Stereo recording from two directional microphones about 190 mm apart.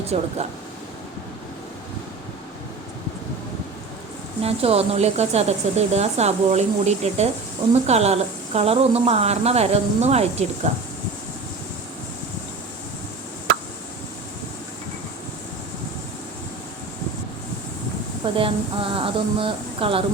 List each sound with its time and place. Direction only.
0.1 s speech: 35° right (ahead or behind)
4.4 s speech: 30° right (ahead or behind)
18.3 s speech: 25° right (ahead or behind)